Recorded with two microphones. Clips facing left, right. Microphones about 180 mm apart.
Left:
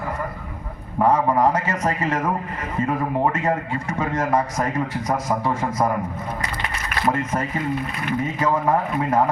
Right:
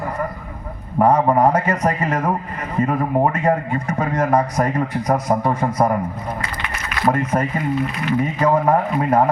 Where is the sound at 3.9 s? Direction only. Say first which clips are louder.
Right 3 dB; 35° right (ahead or behind).